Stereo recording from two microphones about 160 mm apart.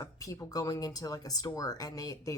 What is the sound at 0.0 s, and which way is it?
Speech, 20° left (ahead or behind).